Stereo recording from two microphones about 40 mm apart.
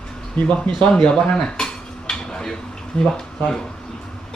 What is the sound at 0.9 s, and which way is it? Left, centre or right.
Speech, centre.